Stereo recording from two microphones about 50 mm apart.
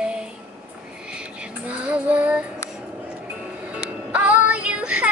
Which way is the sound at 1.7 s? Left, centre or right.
Right.